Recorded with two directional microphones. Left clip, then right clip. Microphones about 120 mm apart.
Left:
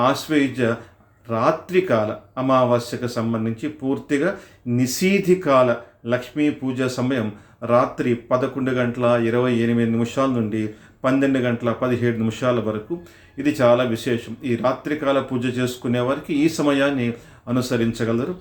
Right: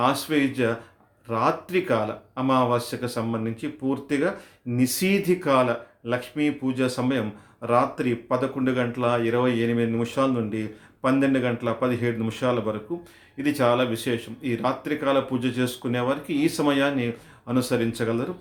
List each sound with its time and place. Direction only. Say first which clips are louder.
0.0 s speech: left 3 dB; 25° right (ahead or behind)